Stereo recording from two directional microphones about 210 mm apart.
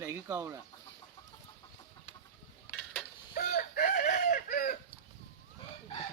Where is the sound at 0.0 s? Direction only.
10° right (ahead or behind).